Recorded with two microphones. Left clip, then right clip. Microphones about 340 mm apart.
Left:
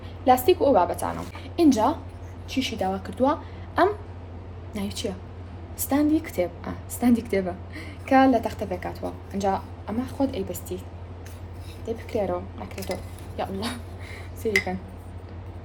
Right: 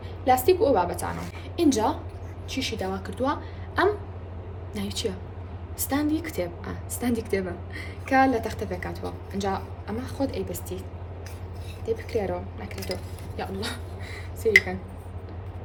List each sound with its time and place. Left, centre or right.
0.3 s a woman's voice: centre
11.9 s a woman's voice: centre